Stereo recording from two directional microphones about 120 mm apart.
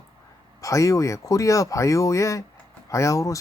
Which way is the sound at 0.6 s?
25° left (ahead or behind).